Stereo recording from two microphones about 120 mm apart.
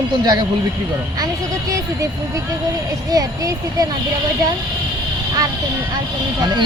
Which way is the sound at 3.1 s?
30° right (ahead or behind).